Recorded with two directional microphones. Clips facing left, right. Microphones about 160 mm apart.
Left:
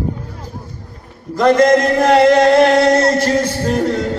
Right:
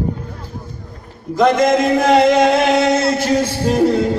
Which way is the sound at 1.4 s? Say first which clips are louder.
Left 2 dB; centre (ahead or behind).